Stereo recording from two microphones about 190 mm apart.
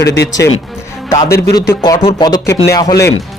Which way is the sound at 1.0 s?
15° left (ahead or behind).